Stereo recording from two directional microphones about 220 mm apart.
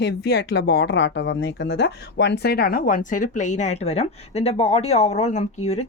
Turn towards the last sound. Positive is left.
turn(degrees=30)  # may be behind; listen again after turning